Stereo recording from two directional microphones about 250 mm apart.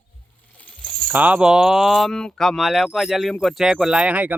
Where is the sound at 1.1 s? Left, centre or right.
Centre.